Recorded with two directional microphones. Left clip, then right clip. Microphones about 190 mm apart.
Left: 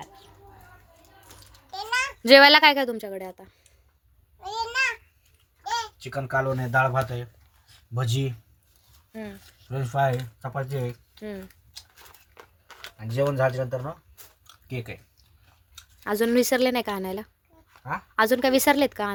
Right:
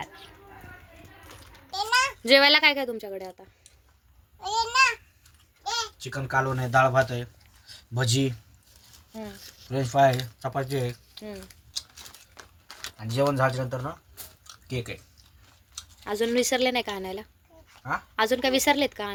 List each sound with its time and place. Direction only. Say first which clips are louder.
1.7 s a sound: right 3 dB; 25° left (ahead or behind)
2.2 s a woman's voice: left 6 dB; 35° left (ahead or behind); by 3.5 s 20° left (ahead or behind)
4.4 s babbling: right 4 dB; 25° left (ahead or behind)
6.2 s speech: even; 10° left (ahead or behind)
11.2 s speech: left 5 dB; 25° left (ahead or behind)
12.3 s a sound: right 1 dB; 10° left (ahead or behind)
13.0 s speech: even; centre (ahead or behind)
14.4 s a sound: right 2 dB; 35° left (ahead or behind)
16.0 s a woman's voice: left 3 dB; 40° left (ahead or behind)